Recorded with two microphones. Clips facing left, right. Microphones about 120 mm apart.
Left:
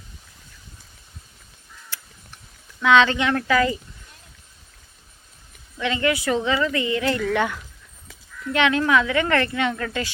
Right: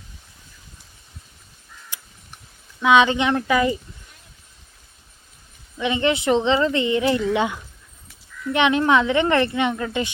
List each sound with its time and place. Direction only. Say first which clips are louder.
1.9 s a sound: left 2 dB; 15° right (ahead or behind)
2.8 s speech: right 1 dB; 15° right (ahead or behind)
5.7 s speech: right 2 dB; 20° right (ahead or behind)